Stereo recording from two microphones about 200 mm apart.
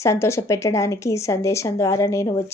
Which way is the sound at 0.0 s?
15° left (ahead or behind).